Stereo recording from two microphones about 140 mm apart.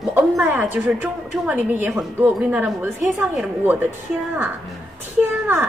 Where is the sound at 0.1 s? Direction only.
10° right (ahead or behind).